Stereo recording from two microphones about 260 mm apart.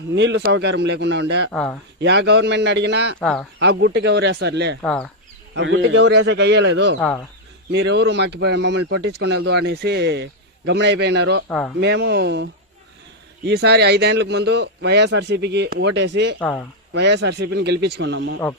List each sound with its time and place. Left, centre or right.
0.1 s speech: right
3.2 s speech: centre
3.6 s speech: right
4.8 s speech: centre
5.5 s speech: right
11.4 s speech: centre
11.8 s speech: right
13.5 s speech: right
16.4 s speech: centre
16.9 s speech: right